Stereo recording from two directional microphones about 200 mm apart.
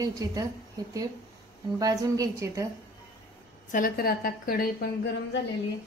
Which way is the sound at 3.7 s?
45° left (ahead or behind).